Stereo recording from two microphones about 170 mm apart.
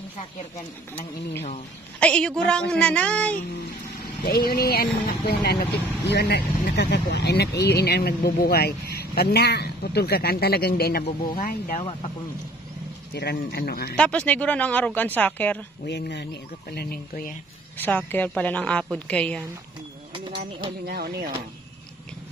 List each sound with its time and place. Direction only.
2.0 s a woman's voice: 5° left (ahead or behind)
4.2 s speech: 60° left (ahead or behind)
6.0 s speech: 80° left
11.3 s speech: 50° left (ahead or behind)
13.1 s speech: 70° left (ahead or behind)
13.9 s speech: 5° left (ahead or behind)
15.9 s speech: 90° left
16.7 s speech: 60° left (ahead or behind)
17.7 s speech: 10° left (ahead or behind)
20.2 s a sound: 30° right (ahead or behind)
20.8 s speech: 65° right (ahead or behind)